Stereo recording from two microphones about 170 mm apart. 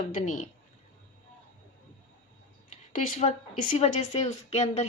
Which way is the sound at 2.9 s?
45° left (ahead or behind).